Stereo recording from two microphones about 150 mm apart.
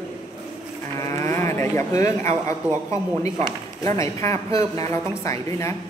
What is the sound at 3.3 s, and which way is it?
Speech, 30° right (ahead or behind).